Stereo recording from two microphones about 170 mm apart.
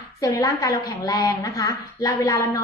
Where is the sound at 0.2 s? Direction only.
20° left (ahead or behind).